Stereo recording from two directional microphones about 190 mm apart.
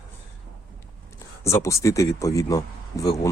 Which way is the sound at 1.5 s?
15° left (ahead or behind).